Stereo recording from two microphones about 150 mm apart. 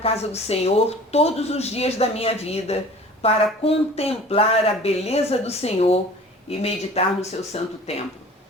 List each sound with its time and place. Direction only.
0.0 s speech: 45° left (ahead or behind)